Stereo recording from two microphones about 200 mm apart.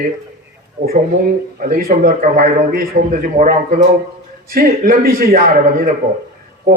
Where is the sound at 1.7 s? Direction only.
45° right (ahead or behind).